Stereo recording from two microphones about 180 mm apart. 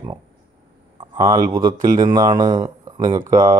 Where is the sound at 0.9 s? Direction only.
25° right (ahead or behind).